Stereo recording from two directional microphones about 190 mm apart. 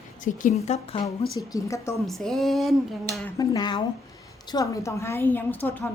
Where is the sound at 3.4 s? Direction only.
20° left (ahead or behind).